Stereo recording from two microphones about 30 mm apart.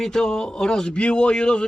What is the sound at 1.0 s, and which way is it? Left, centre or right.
Speech, left.